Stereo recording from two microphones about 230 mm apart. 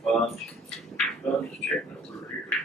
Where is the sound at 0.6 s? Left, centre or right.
Centre.